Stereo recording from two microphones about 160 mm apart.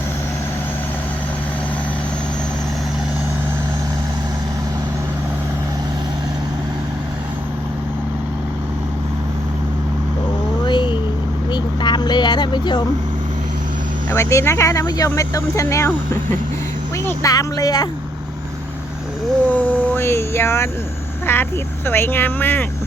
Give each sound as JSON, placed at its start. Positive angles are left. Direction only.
{"t": 10.7, "sound": "a sound", "side_deg": 30}
{"t": 11.5, "sound": "vehicle", "side_deg": 30}
{"t": 14.1, "sound": "speech", "side_deg": 20}
{"t": 17.1, "sound": "speech", "side_deg": 20}
{"t": 19.5, "sound": "vehicle", "side_deg": 10}
{"t": 21.3, "sound": "speech", "side_deg": 15}